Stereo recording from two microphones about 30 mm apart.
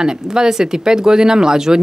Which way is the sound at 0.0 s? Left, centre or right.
Right.